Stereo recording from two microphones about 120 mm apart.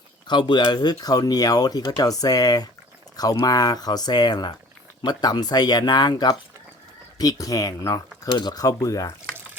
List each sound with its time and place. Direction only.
0.3 s speech: 40° left (ahead or behind)